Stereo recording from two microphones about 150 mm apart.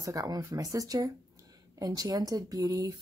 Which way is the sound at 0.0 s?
25° right (ahead or behind).